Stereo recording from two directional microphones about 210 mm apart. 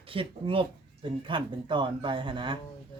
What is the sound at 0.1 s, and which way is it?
Speech, 25° right (ahead or behind).